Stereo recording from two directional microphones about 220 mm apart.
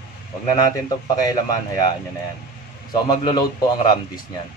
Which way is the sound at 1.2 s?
15° left (ahead or behind).